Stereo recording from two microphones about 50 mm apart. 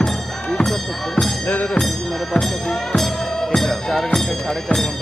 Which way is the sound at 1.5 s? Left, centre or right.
Left.